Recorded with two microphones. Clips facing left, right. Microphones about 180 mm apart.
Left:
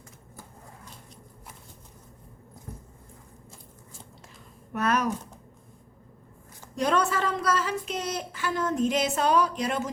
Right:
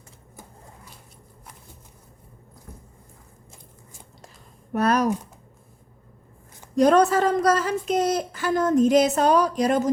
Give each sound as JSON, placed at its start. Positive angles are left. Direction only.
{"t": 4.7, "sound": "a woman's voice", "side_deg": -35}
{"t": 6.7, "sound": "a woman's voice", "side_deg": -40}